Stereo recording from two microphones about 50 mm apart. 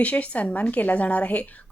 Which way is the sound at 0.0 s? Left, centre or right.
Left.